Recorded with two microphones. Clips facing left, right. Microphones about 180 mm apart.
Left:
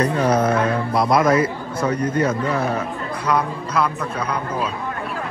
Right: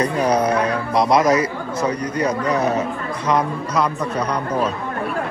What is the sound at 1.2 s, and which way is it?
A man's voice, 55° left (ahead or behind).